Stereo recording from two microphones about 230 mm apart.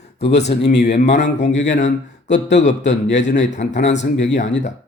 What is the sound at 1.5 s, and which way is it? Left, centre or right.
Speech, left.